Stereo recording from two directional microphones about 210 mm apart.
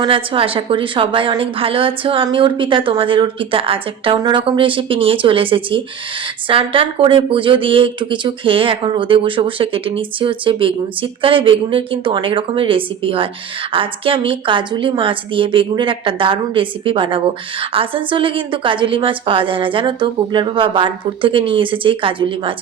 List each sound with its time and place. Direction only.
0.0 s speech: 25° right (ahead or behind)